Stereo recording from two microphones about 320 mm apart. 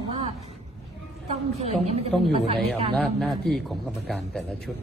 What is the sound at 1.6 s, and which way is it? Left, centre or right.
Speech, centre.